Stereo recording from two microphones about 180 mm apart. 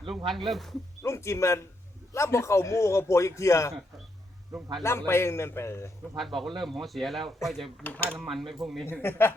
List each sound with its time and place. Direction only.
0.3 s a man's voice: centre (ahead or behind)
1.0 s speech: 15° left (ahead or behind)
4.8 s speech: 15° left (ahead or behind)
6.1 s a man's voice: centre (ahead or behind)
8.9 s speech: 15° left (ahead or behind)